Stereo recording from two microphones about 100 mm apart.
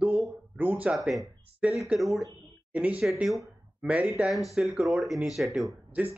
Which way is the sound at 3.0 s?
Centre (ahead or behind).